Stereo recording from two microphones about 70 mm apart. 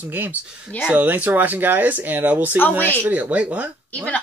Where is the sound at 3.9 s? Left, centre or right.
Left.